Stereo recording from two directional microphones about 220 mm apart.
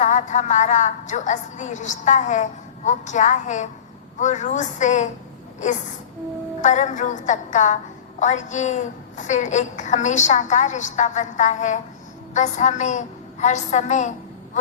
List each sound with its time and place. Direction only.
0.0 s a woman's voice: 35° left (ahead or behind)
6.6 s a woman's voice: 35° left (ahead or behind)